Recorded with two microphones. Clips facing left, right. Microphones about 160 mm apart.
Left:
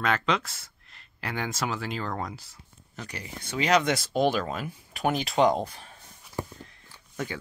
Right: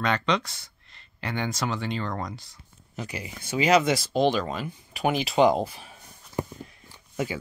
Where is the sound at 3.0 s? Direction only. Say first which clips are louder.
Right 4 dB; 10° right (ahead or behind).